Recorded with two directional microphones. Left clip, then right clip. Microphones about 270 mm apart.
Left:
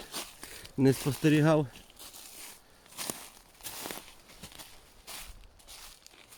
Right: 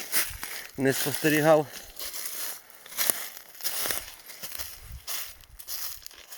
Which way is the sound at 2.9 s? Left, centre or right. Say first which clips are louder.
Right 9 dB; right.